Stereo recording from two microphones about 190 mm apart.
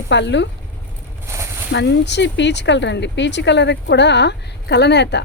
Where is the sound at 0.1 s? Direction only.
70° left (ahead or behind).